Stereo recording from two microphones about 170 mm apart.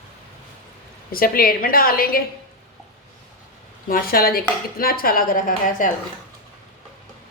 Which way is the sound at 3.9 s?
60° left (ahead or behind).